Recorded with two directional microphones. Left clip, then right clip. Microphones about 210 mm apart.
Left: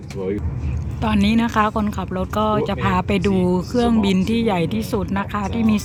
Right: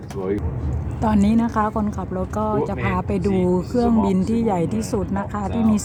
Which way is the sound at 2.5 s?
25° left (ahead or behind).